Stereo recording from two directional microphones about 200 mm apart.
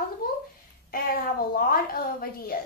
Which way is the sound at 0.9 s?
45° left (ahead or behind).